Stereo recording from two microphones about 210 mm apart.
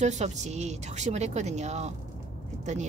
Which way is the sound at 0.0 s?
35° right (ahead or behind).